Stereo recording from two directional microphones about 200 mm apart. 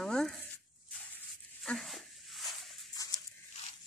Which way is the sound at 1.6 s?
Centre (ahead or behind).